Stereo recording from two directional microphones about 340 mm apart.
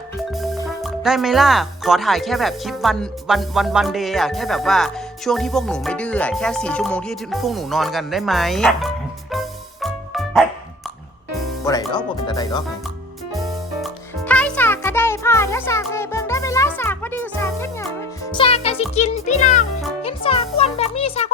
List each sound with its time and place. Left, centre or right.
0.3 s speech: centre
9.3 s music: centre
11.6 s music: centre
13.3 s music: centre